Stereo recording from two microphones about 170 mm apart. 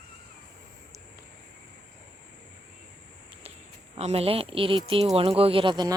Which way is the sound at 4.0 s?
40° right (ahead or behind).